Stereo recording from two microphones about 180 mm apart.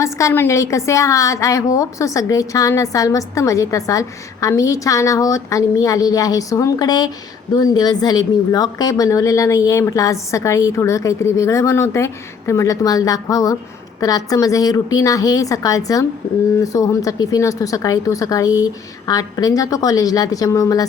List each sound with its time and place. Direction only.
0.0 s a woman's voice: 15° left (ahead or behind)